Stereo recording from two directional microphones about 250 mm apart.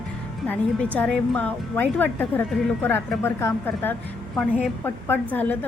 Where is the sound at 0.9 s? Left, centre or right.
Centre.